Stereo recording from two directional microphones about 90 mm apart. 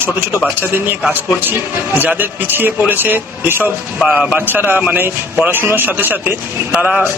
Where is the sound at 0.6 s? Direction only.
25° right (ahead or behind).